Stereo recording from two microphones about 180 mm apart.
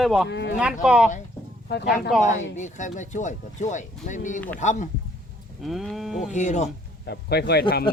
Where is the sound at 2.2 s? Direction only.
40° left (ahead or behind).